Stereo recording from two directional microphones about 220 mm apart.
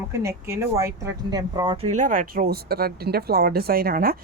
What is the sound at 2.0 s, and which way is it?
A woman's voice, 40° right (ahead or behind).